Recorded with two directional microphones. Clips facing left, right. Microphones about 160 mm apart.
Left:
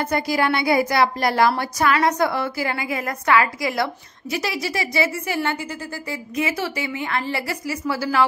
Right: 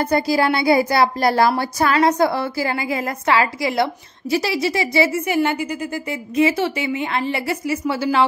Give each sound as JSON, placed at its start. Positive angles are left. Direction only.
{"t": 0.0, "sound": "a woman's voice", "side_deg": -35}